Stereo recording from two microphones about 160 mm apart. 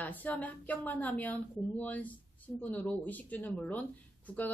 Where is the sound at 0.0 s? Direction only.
10° left (ahead or behind).